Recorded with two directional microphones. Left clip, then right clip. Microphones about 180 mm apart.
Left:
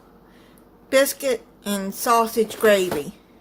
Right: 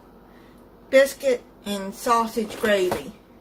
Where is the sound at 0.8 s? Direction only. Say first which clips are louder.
Right 1 dB; 60° left (ahead or behind).